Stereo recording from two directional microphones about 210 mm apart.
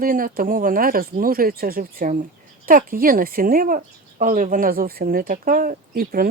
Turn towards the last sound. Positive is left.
turn(degrees=-45)  # may be behind; listen again after turning